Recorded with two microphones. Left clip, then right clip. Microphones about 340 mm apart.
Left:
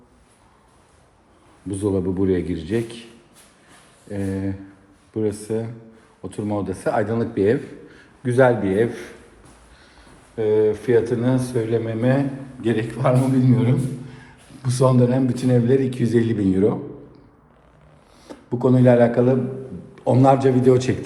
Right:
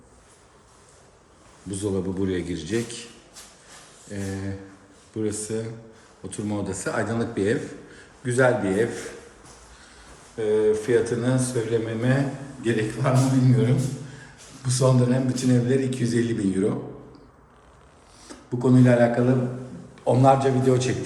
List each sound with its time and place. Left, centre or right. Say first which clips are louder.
1.7 s a man's voice: left 5 dB; centre
4.1 s a man's voice: left 6 dB; centre
10.3 s a man's voice: left 3 dB; centre
18.3 s a man's voice: left 3 dB; centre